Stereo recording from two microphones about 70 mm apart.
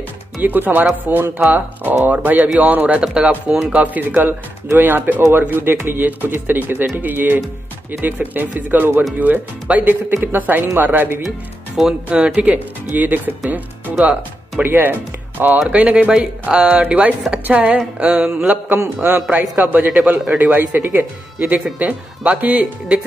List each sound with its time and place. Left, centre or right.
0.4 s speech: right
11.2 s a sound: centre
12.9 s speech: right
14.6 s speech: right
15.7 s a sound: centre
18.9 s speech: right